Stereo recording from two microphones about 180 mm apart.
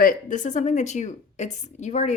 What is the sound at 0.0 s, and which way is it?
A woman's voice, 50° left (ahead or behind).